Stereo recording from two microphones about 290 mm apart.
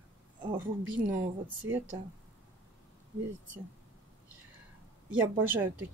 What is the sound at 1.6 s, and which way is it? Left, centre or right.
Speech, right.